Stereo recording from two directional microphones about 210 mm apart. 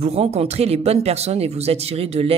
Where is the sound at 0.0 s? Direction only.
30° right (ahead or behind).